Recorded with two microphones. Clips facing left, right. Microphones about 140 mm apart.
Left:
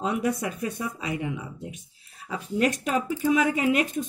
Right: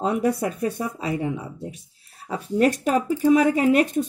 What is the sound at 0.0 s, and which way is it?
Speech, 35° right (ahead or behind).